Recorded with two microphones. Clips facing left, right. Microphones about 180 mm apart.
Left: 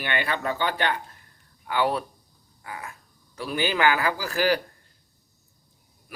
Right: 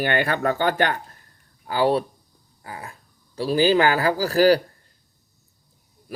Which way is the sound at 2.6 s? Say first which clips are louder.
Right 1 dB; 35° right (ahead or behind).